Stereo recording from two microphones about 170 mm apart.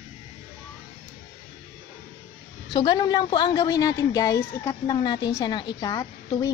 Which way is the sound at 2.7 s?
25° left (ahead or behind).